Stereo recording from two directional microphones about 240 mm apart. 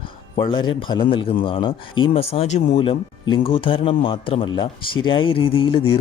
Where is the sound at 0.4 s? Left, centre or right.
Centre.